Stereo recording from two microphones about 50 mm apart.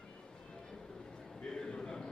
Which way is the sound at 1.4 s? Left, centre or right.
Centre.